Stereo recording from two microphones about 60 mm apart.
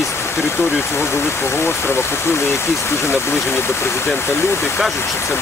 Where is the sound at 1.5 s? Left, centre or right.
Left.